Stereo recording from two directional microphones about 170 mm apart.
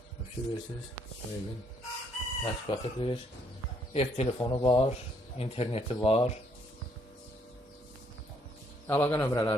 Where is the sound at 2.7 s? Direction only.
30° left (ahead or behind).